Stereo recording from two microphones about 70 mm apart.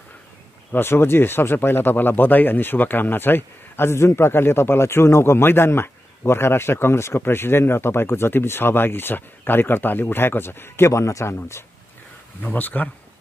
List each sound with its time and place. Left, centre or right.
0.7 s speech: left
10.9 s speech: left
12.4 s speech: left